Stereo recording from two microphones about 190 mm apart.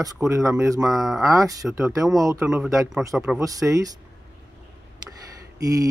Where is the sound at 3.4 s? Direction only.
15° right (ahead or behind).